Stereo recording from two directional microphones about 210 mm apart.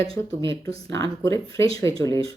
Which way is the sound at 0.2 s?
15° left (ahead or behind).